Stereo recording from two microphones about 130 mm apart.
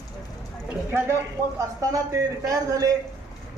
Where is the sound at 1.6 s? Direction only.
25° right (ahead or behind).